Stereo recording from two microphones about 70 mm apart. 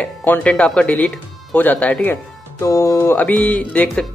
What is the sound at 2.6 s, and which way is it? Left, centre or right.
Speech, left.